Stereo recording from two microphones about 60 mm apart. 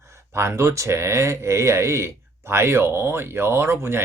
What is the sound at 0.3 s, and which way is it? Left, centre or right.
Speech, right.